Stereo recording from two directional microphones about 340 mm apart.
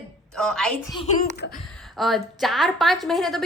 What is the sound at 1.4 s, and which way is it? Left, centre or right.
Speech, left.